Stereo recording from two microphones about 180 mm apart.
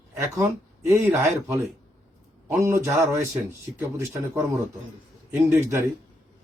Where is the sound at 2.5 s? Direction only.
15° right (ahead or behind).